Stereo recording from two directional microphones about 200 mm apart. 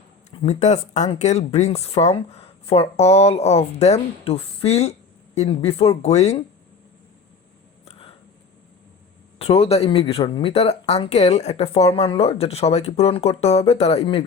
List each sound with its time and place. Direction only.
0.4 s speech: 35° left (ahead or behind)
7.9 s a sound: 30° left (ahead or behind)
9.4 s speech: 30° left (ahead or behind)